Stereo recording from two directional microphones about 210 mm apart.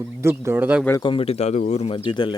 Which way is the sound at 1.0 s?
25° left (ahead or behind).